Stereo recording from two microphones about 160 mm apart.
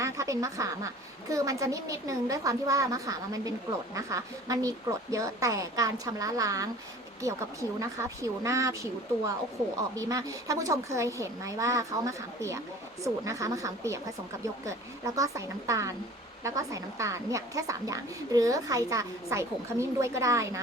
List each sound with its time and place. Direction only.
0.0 s a woman's voice: 20° right (ahead or behind)